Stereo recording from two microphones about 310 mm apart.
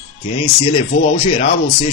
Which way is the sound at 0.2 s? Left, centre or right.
Centre.